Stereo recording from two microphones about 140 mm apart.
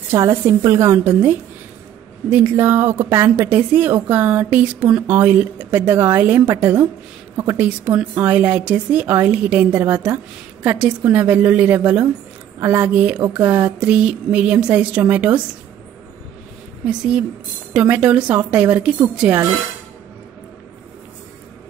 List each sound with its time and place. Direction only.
0.1 s a woman's voice: 20° right (ahead or behind)
2.3 s a woman's voice: 15° right (ahead or behind)
16.8 s a woman's voice: 10° right (ahead or behind)